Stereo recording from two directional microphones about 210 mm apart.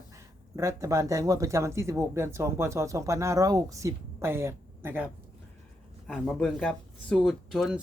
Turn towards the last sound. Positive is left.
turn(degrees=0)  # may be behind; listen again after turning